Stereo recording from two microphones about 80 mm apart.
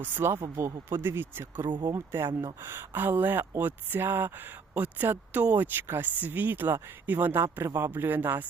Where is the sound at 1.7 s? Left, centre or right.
Right.